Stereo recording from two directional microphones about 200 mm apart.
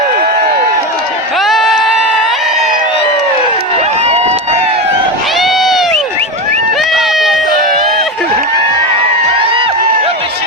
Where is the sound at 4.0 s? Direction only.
30° right (ahead or behind).